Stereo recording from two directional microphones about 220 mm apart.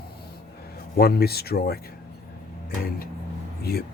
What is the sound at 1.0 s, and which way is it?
Speech, 45° left (ahead or behind).